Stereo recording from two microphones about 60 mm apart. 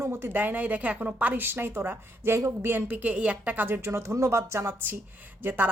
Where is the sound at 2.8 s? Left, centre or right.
Right.